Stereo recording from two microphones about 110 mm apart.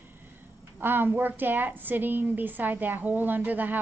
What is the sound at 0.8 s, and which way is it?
A woman's voice, 20° right (ahead or behind).